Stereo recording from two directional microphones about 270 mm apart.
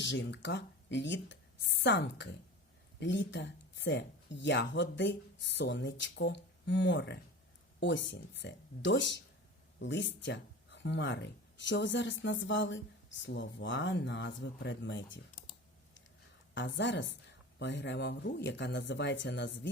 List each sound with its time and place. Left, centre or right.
0.0 s speech: left
16.6 s speech: left